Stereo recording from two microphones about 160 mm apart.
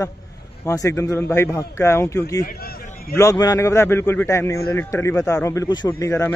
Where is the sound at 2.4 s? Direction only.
70° left (ahead or behind).